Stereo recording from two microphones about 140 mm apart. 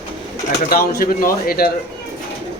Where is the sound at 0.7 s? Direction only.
90° left.